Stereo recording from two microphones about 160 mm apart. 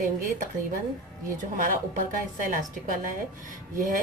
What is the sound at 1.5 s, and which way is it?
A woman's voice, 55° right (ahead or behind).